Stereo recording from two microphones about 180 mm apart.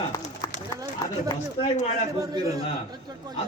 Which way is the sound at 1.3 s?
35° left (ahead or behind).